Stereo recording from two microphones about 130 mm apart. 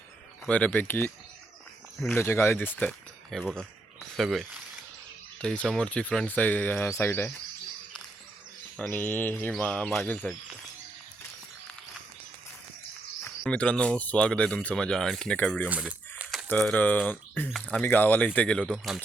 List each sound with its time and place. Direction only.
0.4 s speech: 10° left (ahead or behind)
8.9 s speech: 15° left (ahead or behind)
13.2 s speech: 10° left (ahead or behind)
15.7 s a sound: 10° right (ahead or behind)
16.5 s speech: 10° left (ahead or behind)